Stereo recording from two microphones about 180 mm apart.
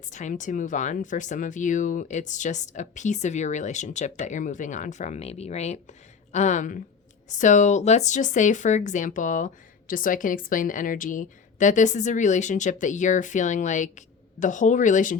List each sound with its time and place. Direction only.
0.1 s speech: 45° left (ahead or behind)